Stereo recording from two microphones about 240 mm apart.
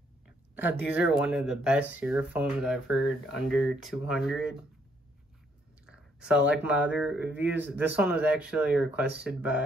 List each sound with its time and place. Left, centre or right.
0.6 s speech: centre
5.9 s speech: centre